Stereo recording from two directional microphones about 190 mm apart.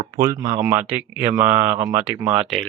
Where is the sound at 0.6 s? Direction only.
10° right (ahead or behind).